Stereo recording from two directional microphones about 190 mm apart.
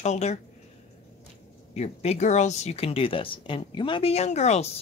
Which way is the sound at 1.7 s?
35° left (ahead or behind).